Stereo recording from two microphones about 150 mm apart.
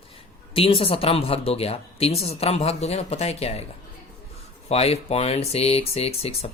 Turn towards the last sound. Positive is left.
turn(degrees=40)  # may be behind; listen again after turning